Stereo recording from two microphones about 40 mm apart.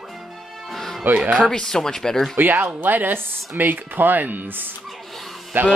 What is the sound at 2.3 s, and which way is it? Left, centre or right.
Speech, right.